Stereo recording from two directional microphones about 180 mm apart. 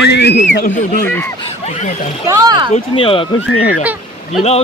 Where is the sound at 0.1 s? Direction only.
70° left (ahead or behind).